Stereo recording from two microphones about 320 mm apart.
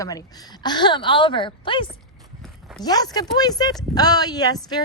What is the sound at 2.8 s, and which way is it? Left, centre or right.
A woman's voice, centre.